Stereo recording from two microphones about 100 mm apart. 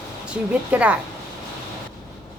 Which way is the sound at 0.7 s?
15° right (ahead or behind).